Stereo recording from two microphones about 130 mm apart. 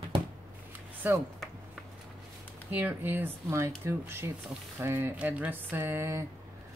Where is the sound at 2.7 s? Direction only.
15° right (ahead or behind).